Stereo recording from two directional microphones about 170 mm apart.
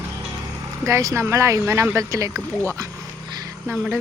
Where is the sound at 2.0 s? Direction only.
20° right (ahead or behind).